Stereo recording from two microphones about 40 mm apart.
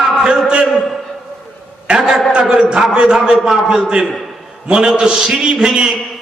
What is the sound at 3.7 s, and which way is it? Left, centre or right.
A man's voice, centre.